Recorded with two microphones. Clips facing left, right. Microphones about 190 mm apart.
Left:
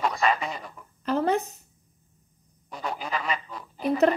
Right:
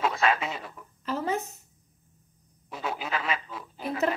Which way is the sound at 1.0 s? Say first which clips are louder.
Left 6 dB; 70° left (ahead or behind).